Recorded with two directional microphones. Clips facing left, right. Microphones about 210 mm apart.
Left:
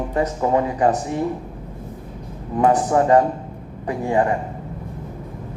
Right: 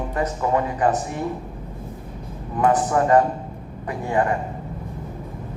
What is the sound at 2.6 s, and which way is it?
A man's voice, 30° left (ahead or behind).